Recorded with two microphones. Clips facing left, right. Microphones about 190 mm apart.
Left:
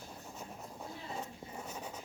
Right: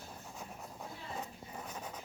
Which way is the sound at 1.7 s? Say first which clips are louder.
Even; 10° left (ahead or behind).